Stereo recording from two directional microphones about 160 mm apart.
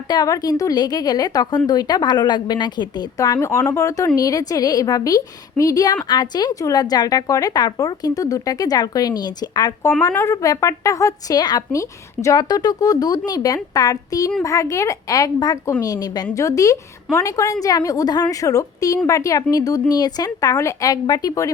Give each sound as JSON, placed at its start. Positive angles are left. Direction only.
{"t": 0.1, "sound": "a woman's voice", "side_deg": 25}